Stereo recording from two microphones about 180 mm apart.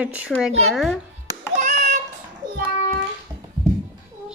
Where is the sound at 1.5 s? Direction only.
40° right (ahead or behind).